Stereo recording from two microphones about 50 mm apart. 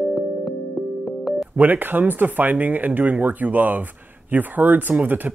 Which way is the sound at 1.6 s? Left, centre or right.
Right.